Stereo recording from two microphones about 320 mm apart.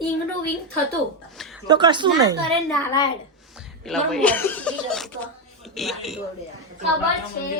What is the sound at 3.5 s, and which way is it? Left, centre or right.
Speech, centre.